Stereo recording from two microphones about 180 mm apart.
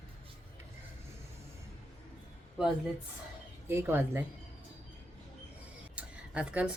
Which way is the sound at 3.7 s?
10° right (ahead or behind).